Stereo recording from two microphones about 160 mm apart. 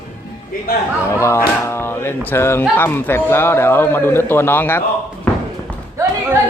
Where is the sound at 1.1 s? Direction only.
15° left (ahead or behind).